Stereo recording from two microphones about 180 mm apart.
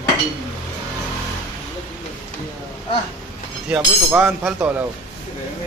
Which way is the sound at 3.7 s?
10° right (ahead or behind).